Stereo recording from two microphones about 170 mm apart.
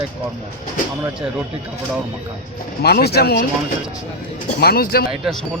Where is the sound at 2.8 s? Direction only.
70° left (ahead or behind).